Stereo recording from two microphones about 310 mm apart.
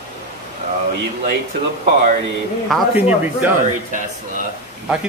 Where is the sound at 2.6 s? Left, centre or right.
Centre.